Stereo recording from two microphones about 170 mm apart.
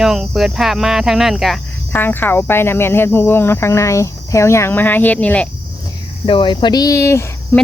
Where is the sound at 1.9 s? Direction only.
10° left (ahead or behind).